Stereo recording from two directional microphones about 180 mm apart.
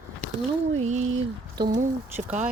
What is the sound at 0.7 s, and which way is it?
Speech, 40° right (ahead or behind).